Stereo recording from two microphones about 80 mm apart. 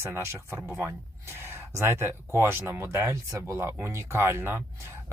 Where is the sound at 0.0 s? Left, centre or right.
Right.